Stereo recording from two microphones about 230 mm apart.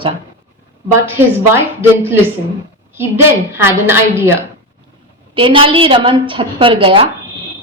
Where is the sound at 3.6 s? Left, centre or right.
Centre.